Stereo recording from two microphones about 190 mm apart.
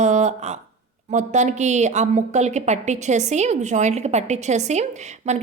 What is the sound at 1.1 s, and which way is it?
A woman's voice, 35° right (ahead or behind).